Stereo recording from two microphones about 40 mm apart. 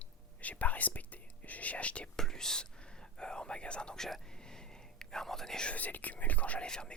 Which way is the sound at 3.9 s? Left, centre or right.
Centre.